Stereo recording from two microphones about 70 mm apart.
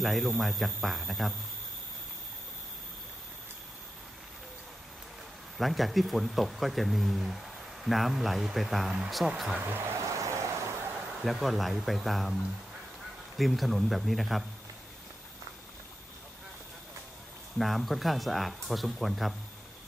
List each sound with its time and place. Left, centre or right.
0.0 s speech: centre
5.6 s speech: centre
9.6 s speech: right
10.1 s a sound: right
11.1 s speech: centre
13.4 s speech: centre
17.6 s speech: centre